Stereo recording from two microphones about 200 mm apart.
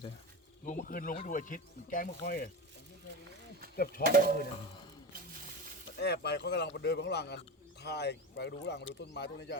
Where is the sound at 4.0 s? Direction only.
50° right (ahead or behind).